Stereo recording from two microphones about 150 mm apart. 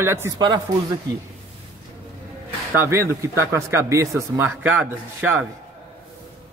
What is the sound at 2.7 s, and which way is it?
A man's voice, 15° right (ahead or behind).